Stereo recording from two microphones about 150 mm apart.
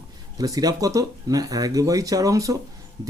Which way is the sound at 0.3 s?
25° right (ahead or behind).